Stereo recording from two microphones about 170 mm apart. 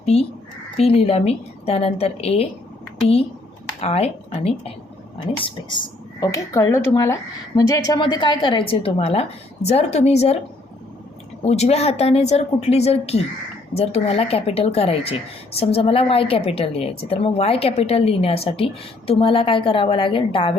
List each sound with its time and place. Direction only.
0.0 s a woman's voice: 35° left (ahead or behind)
3.8 s a woman's voice: 40° left (ahead or behind)
11.4 s a woman's voice: 40° left (ahead or behind)